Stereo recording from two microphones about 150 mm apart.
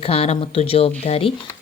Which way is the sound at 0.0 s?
40° left (ahead or behind).